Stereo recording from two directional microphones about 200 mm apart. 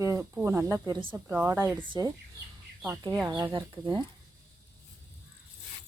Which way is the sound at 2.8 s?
15° right (ahead or behind).